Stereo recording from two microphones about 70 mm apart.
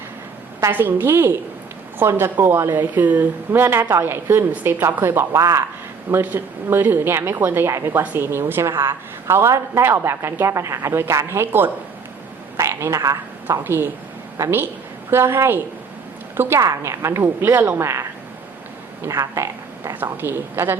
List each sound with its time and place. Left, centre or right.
0.7 s a woman's voice: right
6.1 s a woman's voice: right
12.5 s frog: right
13.0 s a woman's voice: right
13.7 s a woman's voice: right
16.6 s a woman's voice: right
19.0 s a woman's voice: right
19.4 s a sound: right
20.0 s a woman's voice: right